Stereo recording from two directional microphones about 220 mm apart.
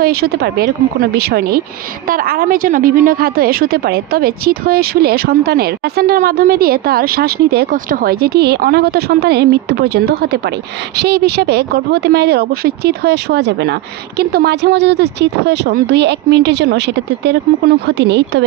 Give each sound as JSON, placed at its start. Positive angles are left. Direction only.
{"t": 0.0, "sound": "a woman's voice", "side_deg": -45}